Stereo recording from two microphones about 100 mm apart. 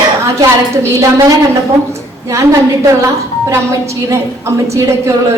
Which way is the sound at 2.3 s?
30° right (ahead or behind).